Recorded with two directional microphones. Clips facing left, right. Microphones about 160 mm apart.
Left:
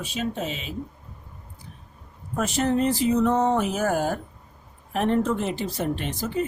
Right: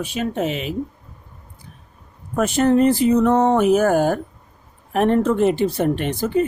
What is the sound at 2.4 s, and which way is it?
Speech, 60° right (ahead or behind).